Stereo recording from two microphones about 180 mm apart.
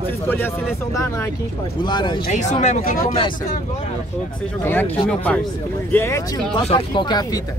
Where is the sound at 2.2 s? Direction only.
40° left (ahead or behind).